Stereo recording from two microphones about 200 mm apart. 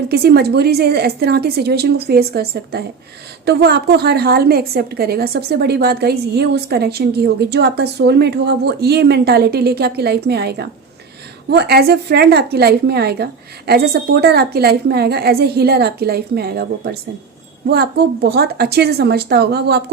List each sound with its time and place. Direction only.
0.1 s a woman's voice: 50° right (ahead or behind)